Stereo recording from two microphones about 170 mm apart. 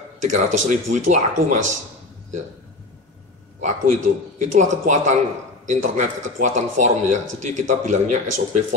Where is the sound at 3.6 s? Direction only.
45° right (ahead or behind).